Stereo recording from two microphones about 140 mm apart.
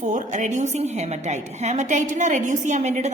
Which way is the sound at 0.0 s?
65° right (ahead or behind).